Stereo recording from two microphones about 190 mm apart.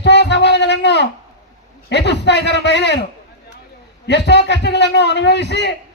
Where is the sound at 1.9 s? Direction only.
65° left (ahead or behind).